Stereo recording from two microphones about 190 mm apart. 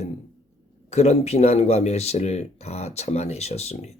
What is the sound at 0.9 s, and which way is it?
Speech, 35° left (ahead or behind).